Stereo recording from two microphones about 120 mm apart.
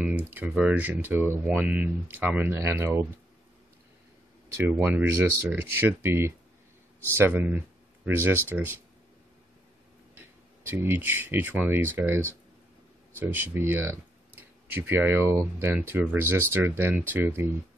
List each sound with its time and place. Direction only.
0.0 s speech: 15° right (ahead or behind)
4.6 s speech: 15° right (ahead or behind)
10.7 s speech: 20° right (ahead or behind)